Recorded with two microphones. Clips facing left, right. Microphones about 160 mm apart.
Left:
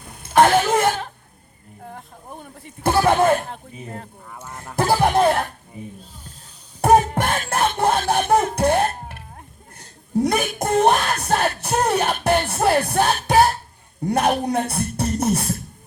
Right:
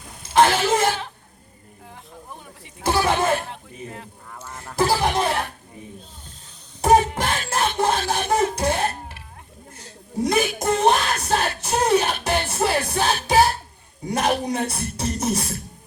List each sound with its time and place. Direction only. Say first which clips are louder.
0.0 s a sound: left 2 dB; 60° left (ahead or behind)
4.3 s a sound: even; 10° left (ahead or behind)
4.9 s speech: left 8 dB; 50° left (ahead or behind)
6.8 s music: left 1 dB; 50° left (ahead or behind)
10.2 s speech: right 2 dB; 55° left (ahead or behind)
10.6 s music: left 4 dB; 55° left (ahead or behind)
14.0 s speech: left 3 dB; 55° left (ahead or behind)